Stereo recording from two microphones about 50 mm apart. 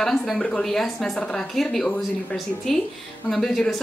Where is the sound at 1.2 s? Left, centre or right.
Centre.